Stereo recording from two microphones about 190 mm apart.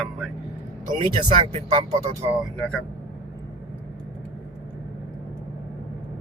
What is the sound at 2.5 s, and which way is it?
Speech, 5° left (ahead or behind).